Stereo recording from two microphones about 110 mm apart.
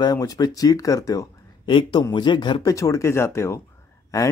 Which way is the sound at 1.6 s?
50° left (ahead or behind).